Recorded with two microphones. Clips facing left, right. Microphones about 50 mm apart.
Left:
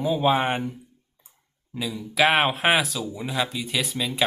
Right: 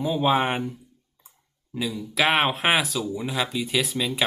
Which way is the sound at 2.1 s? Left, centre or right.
Centre.